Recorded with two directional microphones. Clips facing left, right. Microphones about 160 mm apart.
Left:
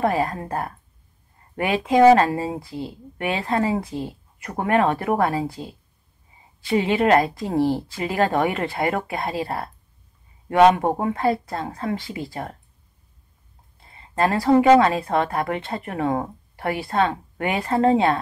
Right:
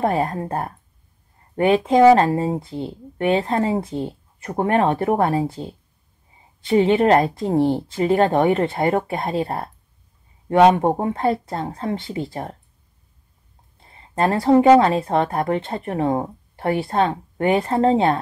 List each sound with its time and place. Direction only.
0.0 s speech: 30° right (ahead or behind)
1.8 s a woman's voice: 25° right (ahead or behind)
6.7 s a woman's voice: 30° right (ahead or behind)
10.8 s speech: 25° right (ahead or behind)
14.1 s speech: 30° right (ahead or behind)
17.9 s a woman's voice: 40° right (ahead or behind)